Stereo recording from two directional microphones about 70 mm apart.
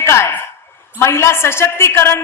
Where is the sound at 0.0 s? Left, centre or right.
Left.